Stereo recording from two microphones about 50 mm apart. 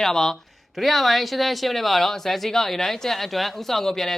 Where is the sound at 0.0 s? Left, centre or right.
Centre.